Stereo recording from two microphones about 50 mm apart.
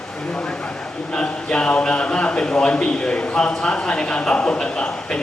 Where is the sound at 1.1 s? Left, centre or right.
Centre.